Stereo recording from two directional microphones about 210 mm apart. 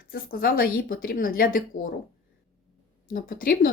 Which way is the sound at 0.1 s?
45° left (ahead or behind).